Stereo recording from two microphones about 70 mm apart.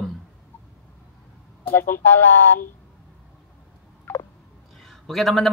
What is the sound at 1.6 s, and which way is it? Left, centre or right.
Speech, left.